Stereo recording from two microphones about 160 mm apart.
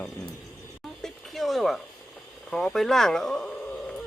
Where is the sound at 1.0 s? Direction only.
Centre (ahead or behind).